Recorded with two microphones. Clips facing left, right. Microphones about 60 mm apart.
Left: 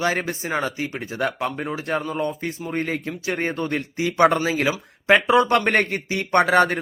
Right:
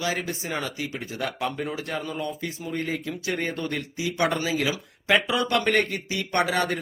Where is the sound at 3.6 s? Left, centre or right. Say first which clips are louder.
Left 5 dB; left.